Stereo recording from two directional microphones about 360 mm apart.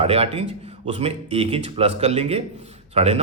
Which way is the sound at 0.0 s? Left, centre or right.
Centre.